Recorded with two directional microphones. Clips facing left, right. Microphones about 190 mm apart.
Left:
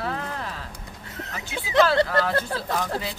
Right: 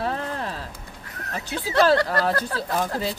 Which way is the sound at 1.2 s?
25° left (ahead or behind).